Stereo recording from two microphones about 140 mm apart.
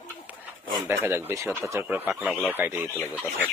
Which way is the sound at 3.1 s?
10° left (ahead or behind).